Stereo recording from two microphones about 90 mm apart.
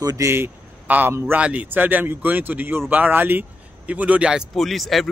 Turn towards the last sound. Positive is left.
turn(degrees=0)  # may be behind; listen again after turning